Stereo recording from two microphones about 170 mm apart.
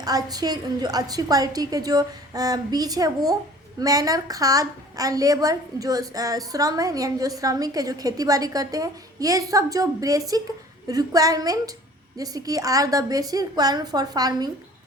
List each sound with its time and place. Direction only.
0.0 s a woman's voice: 20° right (ahead or behind)